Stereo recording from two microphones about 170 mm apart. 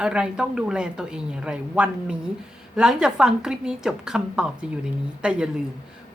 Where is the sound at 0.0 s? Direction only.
5° right (ahead or behind).